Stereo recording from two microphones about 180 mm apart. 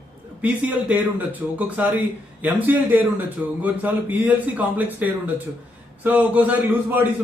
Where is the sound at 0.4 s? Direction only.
10° right (ahead or behind).